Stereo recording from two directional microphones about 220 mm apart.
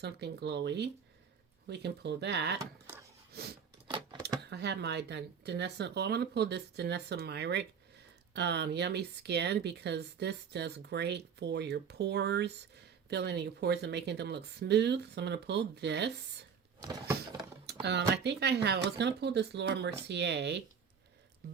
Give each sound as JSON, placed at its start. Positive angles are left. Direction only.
{"t": 0.0, "sound": "speech", "side_deg": -50}
{"t": 3.8, "sound": "a sound", "side_deg": -20}
{"t": 4.4, "sound": "speech", "side_deg": -50}
{"t": 17.7, "sound": "speech", "side_deg": -50}